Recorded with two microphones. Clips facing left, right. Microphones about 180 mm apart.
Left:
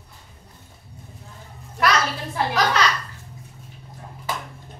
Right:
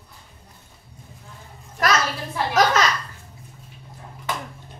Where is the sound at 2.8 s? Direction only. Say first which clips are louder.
Even; 45° right (ahead or behind).